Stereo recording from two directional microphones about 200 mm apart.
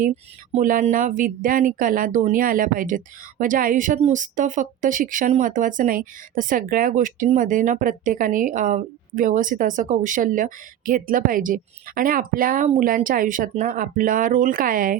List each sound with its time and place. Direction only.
0.5 s speech: 40° right (ahead or behind)